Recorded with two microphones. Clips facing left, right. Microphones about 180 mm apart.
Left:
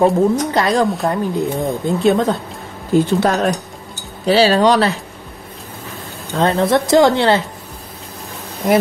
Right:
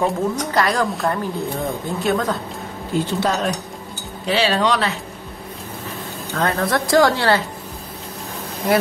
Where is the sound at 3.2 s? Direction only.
55° left (ahead or behind).